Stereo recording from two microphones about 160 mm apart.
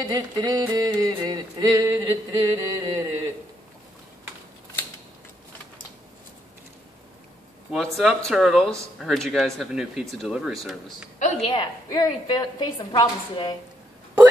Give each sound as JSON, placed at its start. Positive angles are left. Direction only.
{"t": 0.0, "sound": "a sound", "side_deg": -25}
{"t": 7.7, "sound": "speech", "side_deg": 0}
{"t": 11.1, "sound": "a woman's voice", "side_deg": 45}
{"t": 11.5, "sound": "a woman's voice", "side_deg": 30}